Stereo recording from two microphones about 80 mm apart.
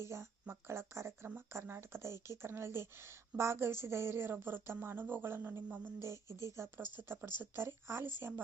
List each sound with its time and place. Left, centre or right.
0.0 s speech: right
6.0 s speech: right